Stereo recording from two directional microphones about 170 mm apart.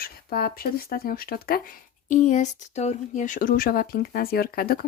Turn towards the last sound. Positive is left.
turn(degrees=60)  # may be behind; listen again after turning